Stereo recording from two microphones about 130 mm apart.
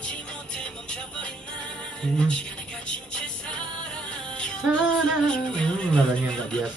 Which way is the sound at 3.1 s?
5° left (ahead or behind).